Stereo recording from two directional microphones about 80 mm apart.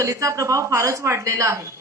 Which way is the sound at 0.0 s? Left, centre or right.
Right.